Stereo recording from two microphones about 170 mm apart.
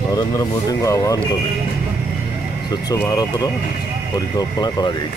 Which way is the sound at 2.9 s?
20° left (ahead or behind).